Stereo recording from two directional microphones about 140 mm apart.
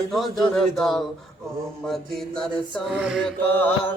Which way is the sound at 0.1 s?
Centre (ahead or behind).